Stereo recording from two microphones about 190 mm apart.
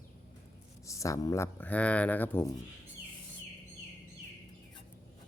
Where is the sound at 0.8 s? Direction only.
15° left (ahead or behind).